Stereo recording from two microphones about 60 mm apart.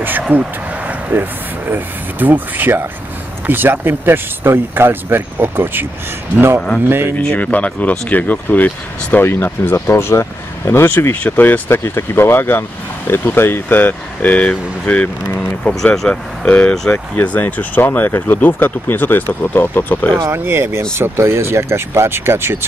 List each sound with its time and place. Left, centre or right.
0.0 s a sound: right
1.7 s speech: right
7.3 s speech: left
9.2 s speech: left
11.1 s speech: left
11.8 s speech: left
15.8 s speech: centre
16.4 s speech: left
20.3 s speech: right